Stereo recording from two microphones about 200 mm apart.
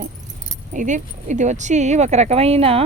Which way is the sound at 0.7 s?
40° right (ahead or behind).